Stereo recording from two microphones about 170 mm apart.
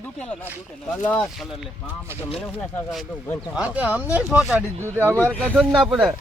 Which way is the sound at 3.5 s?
5° right (ahead or behind).